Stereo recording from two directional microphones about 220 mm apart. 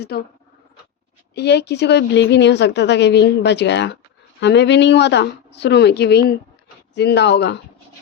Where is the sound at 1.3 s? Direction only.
50° left (ahead or behind).